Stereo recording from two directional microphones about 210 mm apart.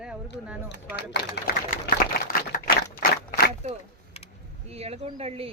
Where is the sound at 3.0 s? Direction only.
40° left (ahead or behind).